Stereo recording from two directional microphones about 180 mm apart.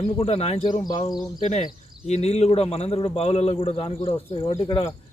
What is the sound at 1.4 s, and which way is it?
A man's voice, 45° left (ahead or behind).